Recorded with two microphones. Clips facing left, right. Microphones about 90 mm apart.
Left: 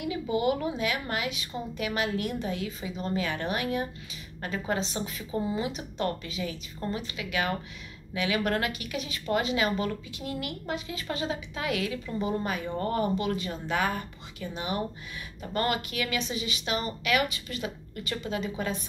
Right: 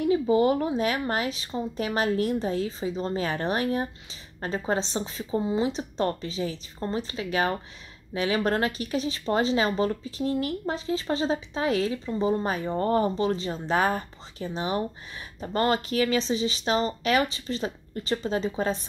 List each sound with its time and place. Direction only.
0.0 s a woman's voice: 35° right (ahead or behind)